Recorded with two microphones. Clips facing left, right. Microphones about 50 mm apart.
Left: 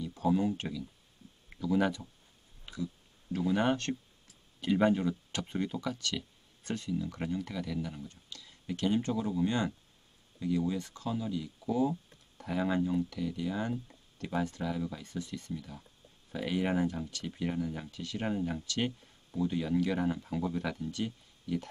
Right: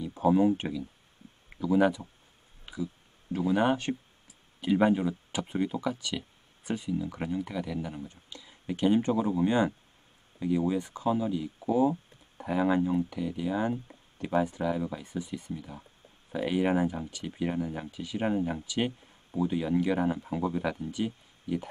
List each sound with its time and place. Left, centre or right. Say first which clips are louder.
0.0 s speech: right 6 dB; right
2.6 s a sound: right 3 dB; centre
3.3 s speech: right 3 dB; centre